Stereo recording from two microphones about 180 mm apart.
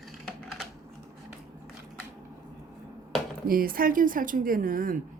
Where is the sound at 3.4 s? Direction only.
55° right (ahead or behind).